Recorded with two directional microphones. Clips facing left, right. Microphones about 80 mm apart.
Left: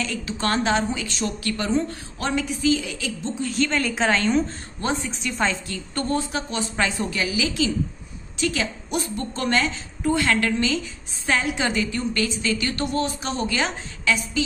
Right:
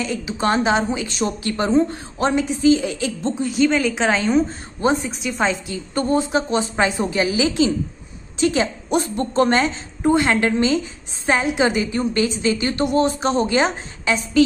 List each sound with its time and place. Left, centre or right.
0.0 s a woman's voice: centre; by 3.4 s right
3.4 s a woman's voice: centre
4.8 s a woman's voice: centre